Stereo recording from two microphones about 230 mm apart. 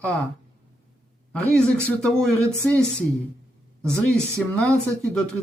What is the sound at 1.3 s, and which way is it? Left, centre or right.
Speech, centre.